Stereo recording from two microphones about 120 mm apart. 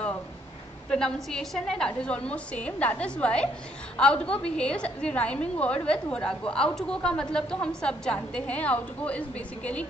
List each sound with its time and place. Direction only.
0.8 s a woman's voice: 5° left (ahead or behind)